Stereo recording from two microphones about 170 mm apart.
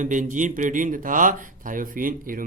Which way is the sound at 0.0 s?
45° right (ahead or behind).